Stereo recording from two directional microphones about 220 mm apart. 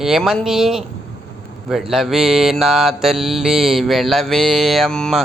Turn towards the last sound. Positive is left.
turn(degrees=5)  # may be behind; listen again after turning